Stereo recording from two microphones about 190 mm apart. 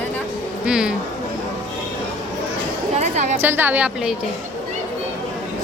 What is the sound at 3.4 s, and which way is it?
Speech, 10° right (ahead or behind).